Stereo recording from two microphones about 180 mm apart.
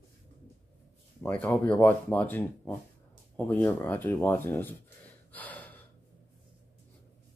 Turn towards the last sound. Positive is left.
turn(degrees=10)  # may be behind; listen again after turning